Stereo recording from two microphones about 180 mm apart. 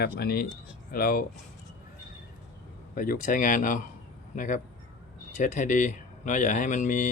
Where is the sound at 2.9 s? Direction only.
50° left (ahead or behind).